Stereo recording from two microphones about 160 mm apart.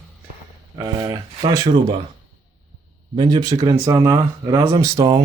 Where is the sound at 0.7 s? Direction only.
25° right (ahead or behind).